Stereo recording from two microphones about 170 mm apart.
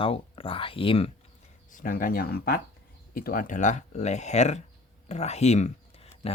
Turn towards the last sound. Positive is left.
turn(degrees=40)  # may be behind; listen again after turning